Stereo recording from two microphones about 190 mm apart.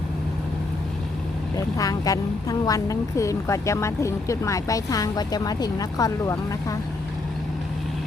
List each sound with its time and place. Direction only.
1.5 s speech: 20° left (ahead or behind)